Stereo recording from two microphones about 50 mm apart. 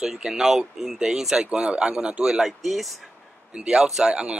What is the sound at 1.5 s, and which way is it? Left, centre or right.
Speech, centre.